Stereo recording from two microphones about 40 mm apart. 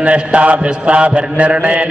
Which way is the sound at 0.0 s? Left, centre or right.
Right.